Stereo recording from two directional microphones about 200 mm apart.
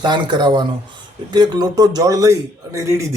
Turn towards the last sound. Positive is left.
turn(degrees=-15)  # may be behind; listen again after turning